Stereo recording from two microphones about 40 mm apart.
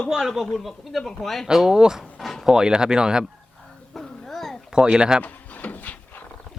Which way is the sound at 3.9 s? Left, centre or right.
Centre.